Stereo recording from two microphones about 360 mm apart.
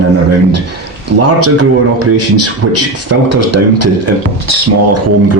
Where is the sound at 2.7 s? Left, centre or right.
Right.